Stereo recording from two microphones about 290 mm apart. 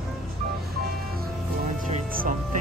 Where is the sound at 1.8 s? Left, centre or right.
Right.